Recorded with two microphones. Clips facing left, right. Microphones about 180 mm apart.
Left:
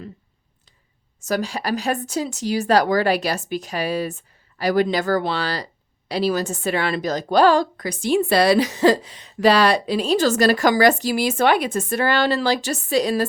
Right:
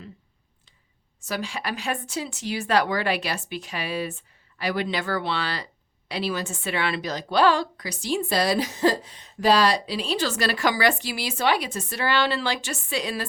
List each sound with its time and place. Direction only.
1.2 s a woman's voice: 40° left (ahead or behind)